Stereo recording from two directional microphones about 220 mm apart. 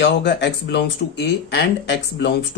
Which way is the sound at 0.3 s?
50° left (ahead or behind).